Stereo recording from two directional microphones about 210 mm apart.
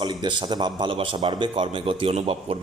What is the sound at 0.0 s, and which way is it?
A man's voice, 20° right (ahead or behind).